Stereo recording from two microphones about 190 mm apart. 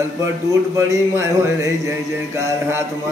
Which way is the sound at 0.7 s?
15° right (ahead or behind).